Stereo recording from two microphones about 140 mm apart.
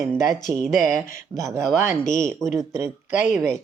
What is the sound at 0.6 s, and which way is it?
Speech, centre (ahead or behind).